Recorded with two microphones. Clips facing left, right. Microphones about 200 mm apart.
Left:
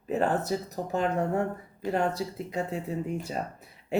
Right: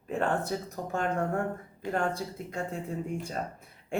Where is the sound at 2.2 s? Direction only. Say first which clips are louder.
Left 4 dB; 5° left (ahead or behind).